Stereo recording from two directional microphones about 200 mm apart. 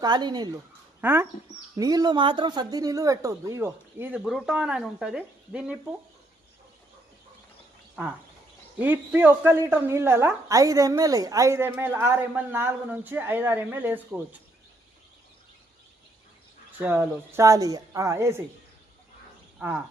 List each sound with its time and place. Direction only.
0.0 s a woman's voice: 20° right (ahead or behind); by 5.7 s 5° right (ahead or behind)
8.8 s a woman's voice: 10° right (ahead or behind)
16.8 s a woman's voice: 10° right (ahead or behind)
19.5 s speech: 10° right (ahead or behind)